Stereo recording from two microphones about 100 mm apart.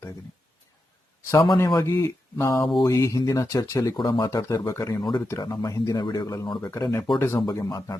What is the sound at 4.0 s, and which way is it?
Speech, 45° left (ahead or behind).